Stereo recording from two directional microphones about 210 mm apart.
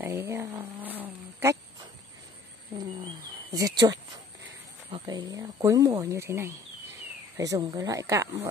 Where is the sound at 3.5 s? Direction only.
15° right (ahead or behind).